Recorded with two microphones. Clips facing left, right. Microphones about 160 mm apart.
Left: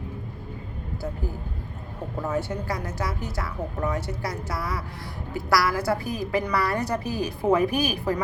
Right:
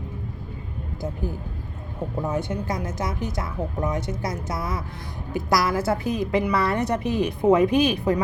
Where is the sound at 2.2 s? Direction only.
20° right (ahead or behind).